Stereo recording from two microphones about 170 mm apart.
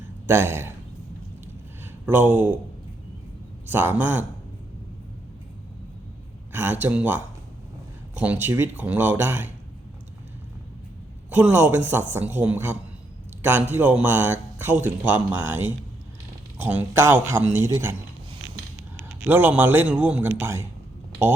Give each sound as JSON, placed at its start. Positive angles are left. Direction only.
{"t": 0.3, "sound": "a man's voice", "side_deg": -15}
{"t": 1.8, "sound": "a sound", "side_deg": -10}
{"t": 3.7, "sound": "a man's voice", "side_deg": -10}
{"t": 6.5, "sound": "a man's voice", "side_deg": -10}
{"t": 11.3, "sound": "a man's voice", "side_deg": -10}
{"t": 19.2, "sound": "a man's voice", "side_deg": -10}